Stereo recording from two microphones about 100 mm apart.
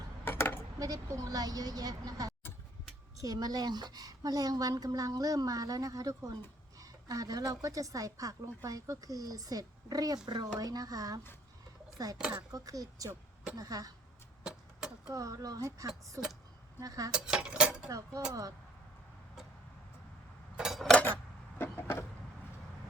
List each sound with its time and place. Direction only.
0.3 s a sound: 25° left (ahead or behind)
0.8 s speech: 35° right (ahead or behind)
12.1 s cutlery: 10° right (ahead or behind)
12.5 s speech: 35° right (ahead or behind)
14.4 s a sound: 5° right (ahead or behind)
15.1 s speech: 35° right (ahead or behind)
17.1 s cutlery: 10° right (ahead or behind)
17.8 s speech: 35° right (ahead or behind)
20.6 s cutlery: 5° right (ahead or behind)
21.6 s vehicle: 25° left (ahead or behind)